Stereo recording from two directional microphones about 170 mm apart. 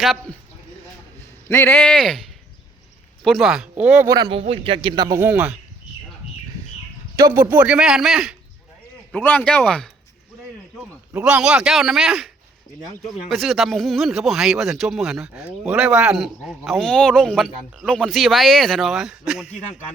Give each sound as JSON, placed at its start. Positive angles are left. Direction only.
{"t": 1.5, "sound": "speech", "side_deg": 15}
{"t": 4.1, "sound": "speech", "side_deg": -25}
{"t": 4.4, "sound": "speech", "side_deg": -35}
{"t": 7.2, "sound": "speech", "side_deg": -15}
{"t": 9.1, "sound": "speech", "side_deg": 10}
{"t": 11.1, "sound": "speech", "side_deg": -5}